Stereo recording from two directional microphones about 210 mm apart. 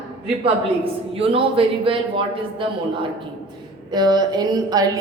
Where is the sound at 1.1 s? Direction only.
25° right (ahead or behind).